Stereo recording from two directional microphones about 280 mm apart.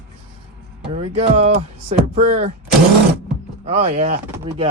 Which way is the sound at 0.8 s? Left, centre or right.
Right.